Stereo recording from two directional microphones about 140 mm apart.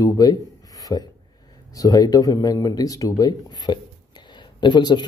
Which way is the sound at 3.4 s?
30° left (ahead or behind).